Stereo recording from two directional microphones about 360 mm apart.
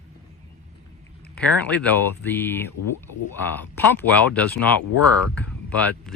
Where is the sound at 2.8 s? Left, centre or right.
Left.